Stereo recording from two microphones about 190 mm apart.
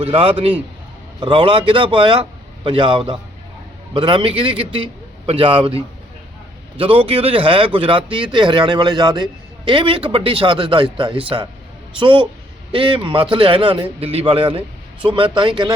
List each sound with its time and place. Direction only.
0.0 s a man's voice: 30° right (ahead or behind)